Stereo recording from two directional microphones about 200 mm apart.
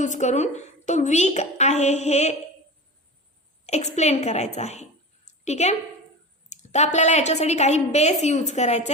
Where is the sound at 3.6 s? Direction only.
35° left (ahead or behind).